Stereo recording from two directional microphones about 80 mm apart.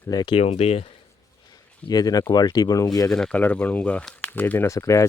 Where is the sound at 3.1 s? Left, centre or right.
Centre.